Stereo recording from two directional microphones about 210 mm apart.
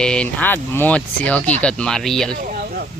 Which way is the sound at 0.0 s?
5° left (ahead or behind).